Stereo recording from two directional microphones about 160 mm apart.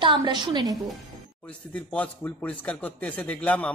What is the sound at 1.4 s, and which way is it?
Speech, 5° left (ahead or behind).